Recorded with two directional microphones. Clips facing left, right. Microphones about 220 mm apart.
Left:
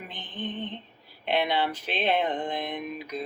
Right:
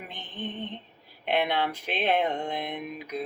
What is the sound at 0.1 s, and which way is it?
Music, 10° right (ahead or behind).